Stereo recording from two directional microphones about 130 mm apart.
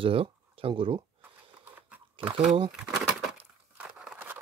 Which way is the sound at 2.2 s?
40° right (ahead or behind).